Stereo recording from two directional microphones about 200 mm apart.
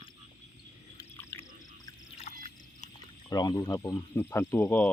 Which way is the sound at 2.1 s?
35° left (ahead or behind).